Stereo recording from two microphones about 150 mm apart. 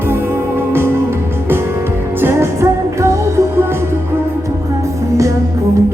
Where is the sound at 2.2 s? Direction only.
20° right (ahead or behind).